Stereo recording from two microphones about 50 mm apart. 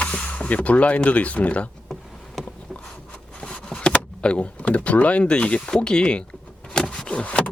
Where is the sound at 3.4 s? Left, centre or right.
Left.